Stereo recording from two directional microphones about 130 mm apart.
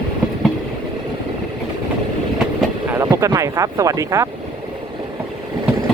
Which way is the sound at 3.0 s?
25° right (ahead or behind).